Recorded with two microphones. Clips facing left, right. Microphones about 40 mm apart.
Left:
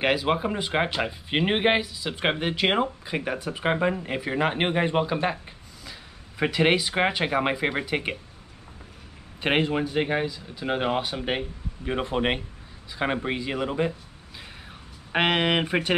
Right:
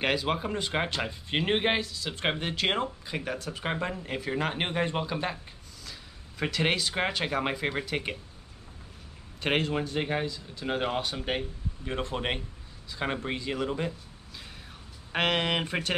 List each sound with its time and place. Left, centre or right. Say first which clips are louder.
0.0 s speech: left 5 dB; centre
9.4 s speech: left 4 dB; centre
14.4 s a sound: left 6 dB; centre